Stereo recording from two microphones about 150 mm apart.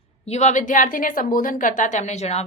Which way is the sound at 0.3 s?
50° left (ahead or behind).